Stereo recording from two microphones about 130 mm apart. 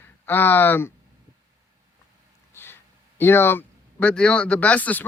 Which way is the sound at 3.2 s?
20° left (ahead or behind).